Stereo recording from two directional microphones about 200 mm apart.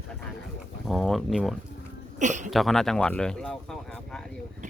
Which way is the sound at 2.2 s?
35° right (ahead or behind).